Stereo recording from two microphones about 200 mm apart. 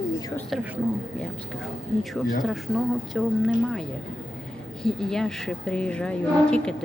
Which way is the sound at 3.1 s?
Centre (ahead or behind).